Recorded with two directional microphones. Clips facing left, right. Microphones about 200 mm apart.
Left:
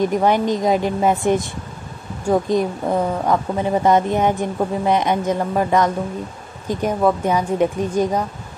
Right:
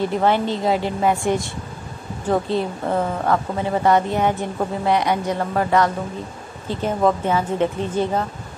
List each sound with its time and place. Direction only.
0.0 s a woman's voice: 15° left (ahead or behind)